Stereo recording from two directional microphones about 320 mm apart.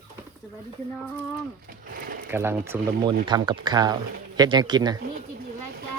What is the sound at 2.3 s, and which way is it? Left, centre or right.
Speech, centre.